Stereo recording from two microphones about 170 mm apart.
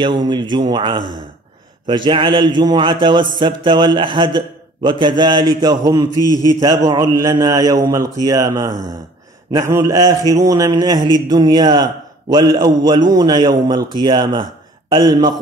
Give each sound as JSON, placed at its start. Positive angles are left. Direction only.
{"t": 0.0, "sound": "a man's voice", "side_deg": -25}
{"t": 6.2, "sound": "a man's voice", "side_deg": 20}
{"t": 6.9, "sound": "a man's voice", "side_deg": -20}